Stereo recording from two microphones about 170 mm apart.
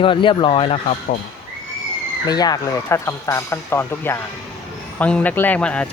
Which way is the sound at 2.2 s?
25° left (ahead or behind).